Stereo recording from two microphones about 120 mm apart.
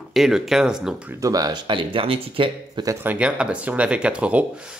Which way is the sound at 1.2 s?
30° right (ahead or behind).